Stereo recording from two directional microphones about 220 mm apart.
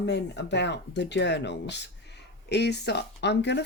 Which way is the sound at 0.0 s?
50° left (ahead or behind).